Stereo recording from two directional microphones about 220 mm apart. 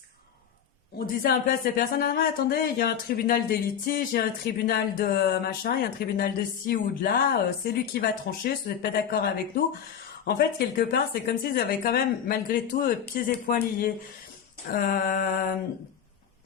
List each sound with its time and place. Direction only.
0.9 s speech: 45° left (ahead or behind)
10.8 s speech: 45° left (ahead or behind)
14.7 s mantra: 40° left (ahead or behind)